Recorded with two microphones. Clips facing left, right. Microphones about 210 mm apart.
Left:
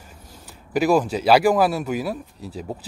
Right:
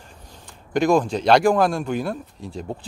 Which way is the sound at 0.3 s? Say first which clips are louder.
Even; 5° left (ahead or behind).